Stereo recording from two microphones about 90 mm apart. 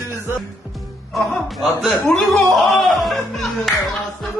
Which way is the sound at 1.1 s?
Centre (ahead or behind).